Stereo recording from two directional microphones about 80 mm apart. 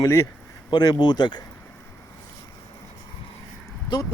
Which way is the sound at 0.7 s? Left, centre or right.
Left.